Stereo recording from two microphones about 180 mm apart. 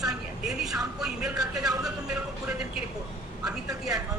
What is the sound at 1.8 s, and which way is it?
Music, 5° right (ahead or behind).